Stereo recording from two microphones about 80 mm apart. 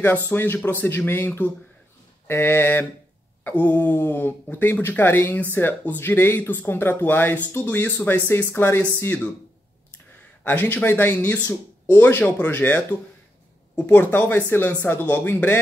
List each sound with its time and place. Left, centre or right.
0.3 s speech: left
10.4 s speech: left